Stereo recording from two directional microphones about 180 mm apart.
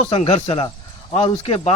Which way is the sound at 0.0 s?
35° left (ahead or behind).